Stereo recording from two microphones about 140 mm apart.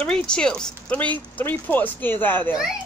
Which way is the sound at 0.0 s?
5° left (ahead or behind).